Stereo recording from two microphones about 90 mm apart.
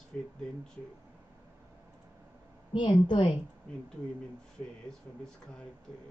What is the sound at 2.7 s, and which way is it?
Speech, 65° left (ahead or behind).